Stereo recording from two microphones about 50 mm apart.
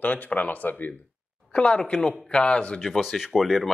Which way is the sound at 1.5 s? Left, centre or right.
Left.